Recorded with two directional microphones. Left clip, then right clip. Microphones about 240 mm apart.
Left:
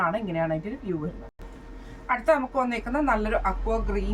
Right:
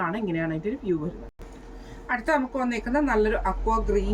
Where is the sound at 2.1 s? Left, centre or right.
Centre.